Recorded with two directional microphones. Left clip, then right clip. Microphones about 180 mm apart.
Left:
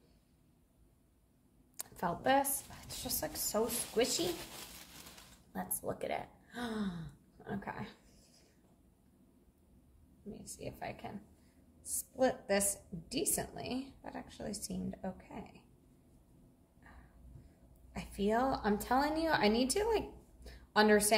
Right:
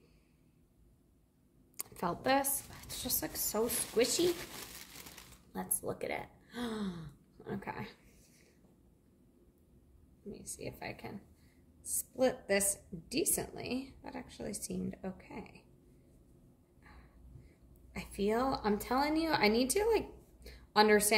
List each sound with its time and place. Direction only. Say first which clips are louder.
1.8 s a woman's voice: even; 15° right (ahead or behind)
5.5 s speech: even; 20° right (ahead or behind)
10.3 s speech: right 1 dB; 20° right (ahead or behind)
12.2 s a woman's voice: right 1 dB; 15° right (ahead or behind)
17.9 s a woman's voice: even; 20° right (ahead or behind)